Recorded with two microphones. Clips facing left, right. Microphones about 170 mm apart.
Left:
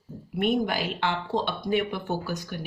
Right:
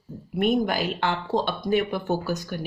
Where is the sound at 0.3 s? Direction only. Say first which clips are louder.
Right 2 dB; 45° right (ahead or behind).